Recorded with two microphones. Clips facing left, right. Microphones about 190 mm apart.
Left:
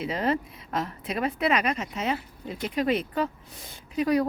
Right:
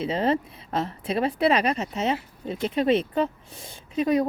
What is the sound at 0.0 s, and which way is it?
Speech, 30° right (ahead or behind).